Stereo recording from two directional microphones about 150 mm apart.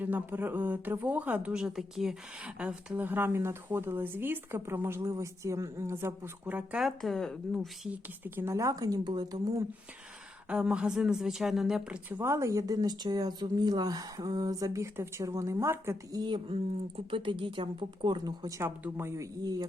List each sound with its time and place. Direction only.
0.0 s speech: 10° right (ahead or behind)
8.2 s a woman's voice: 15° right (ahead or behind)
10.5 s a woman's voice: 5° right (ahead or behind); by 19.6 s 25° right (ahead or behind)